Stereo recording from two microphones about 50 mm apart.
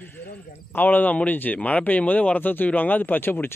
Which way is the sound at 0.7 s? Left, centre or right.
Left.